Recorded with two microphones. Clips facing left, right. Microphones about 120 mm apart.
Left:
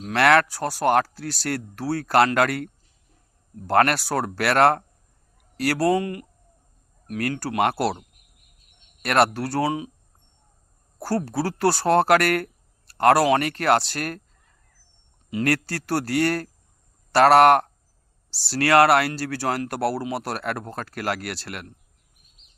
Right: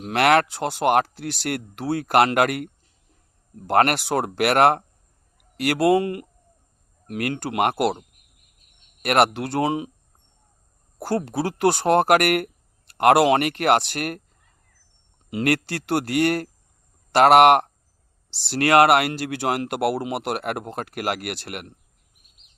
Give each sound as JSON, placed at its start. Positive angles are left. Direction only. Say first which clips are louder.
{"t": 0.0, "sound": "speech", "louder": "even", "side_deg": -20}
{"t": 3.7, "sound": "speech", "louder": "right 1 dB", "side_deg": -20}
{"t": 9.0, "sound": "speech", "louder": "right 1 dB", "side_deg": -20}
{"t": 10.9, "sound": "speech", "louder": "right 1 dB", "side_deg": -20}
{"t": 15.3, "sound": "speech", "louder": "right 1 dB", "side_deg": -20}